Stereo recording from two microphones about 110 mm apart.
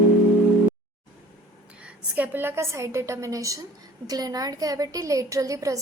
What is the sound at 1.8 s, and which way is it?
A woman's voice, 10° right (ahead or behind).